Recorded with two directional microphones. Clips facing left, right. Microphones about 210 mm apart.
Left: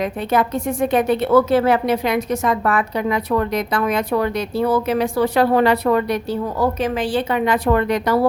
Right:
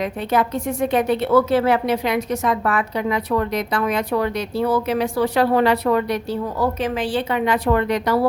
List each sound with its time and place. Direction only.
0.0 s a woman's voice: 50° left (ahead or behind)